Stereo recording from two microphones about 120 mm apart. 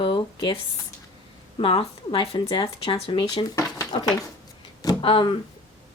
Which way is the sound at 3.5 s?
30° left (ahead or behind).